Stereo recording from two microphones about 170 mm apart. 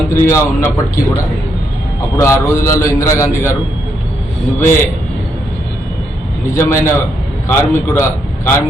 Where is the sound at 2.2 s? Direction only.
15° left (ahead or behind).